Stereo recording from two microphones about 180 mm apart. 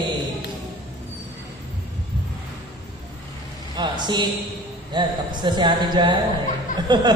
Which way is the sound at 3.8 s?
25° right (ahead or behind).